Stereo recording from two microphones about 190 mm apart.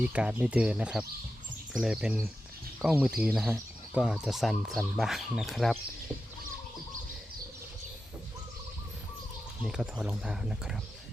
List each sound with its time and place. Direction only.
0.0 s speech: 5° right (ahead or behind)
9.6 s speech: 5° right (ahead or behind)